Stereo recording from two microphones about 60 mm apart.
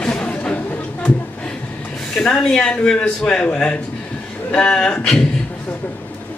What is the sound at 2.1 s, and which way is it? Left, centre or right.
Speech, centre.